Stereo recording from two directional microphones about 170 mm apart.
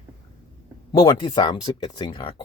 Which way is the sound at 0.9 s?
25° left (ahead or behind).